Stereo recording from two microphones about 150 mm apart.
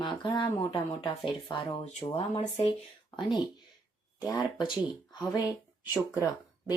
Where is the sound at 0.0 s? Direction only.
30° left (ahead or behind).